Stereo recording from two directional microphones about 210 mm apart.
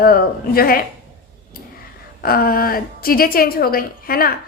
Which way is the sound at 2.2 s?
45° left (ahead or behind).